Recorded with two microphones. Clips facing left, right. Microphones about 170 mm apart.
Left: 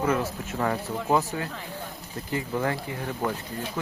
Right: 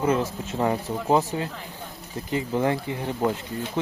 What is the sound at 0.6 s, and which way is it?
Speech, 20° right (ahead or behind).